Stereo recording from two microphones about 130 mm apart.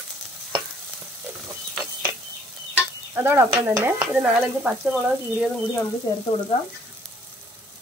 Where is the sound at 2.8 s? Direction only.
15° right (ahead or behind).